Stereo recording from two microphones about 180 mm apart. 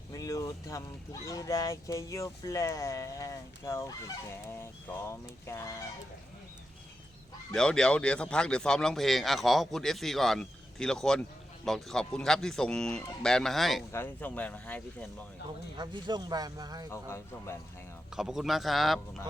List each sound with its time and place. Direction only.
0.1 s vehicle: 20° left (ahead or behind)
1.3 s speech: 15° left (ahead or behind)
7.5 s speech: 5° left (ahead or behind)
13.9 s speech: 10° left (ahead or behind)
15.8 s speech: 25° right (ahead or behind)
16.9 s speech: 15° left (ahead or behind)
18.1 s speech: centre (ahead or behind)